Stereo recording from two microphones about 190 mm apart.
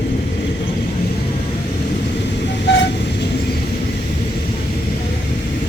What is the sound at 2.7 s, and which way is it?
Train, 70° left (ahead or behind).